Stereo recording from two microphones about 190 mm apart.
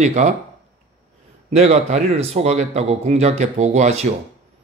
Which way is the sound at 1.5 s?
35° right (ahead or behind).